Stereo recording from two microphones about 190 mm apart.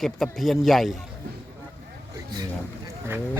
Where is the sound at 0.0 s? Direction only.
Centre (ahead or behind).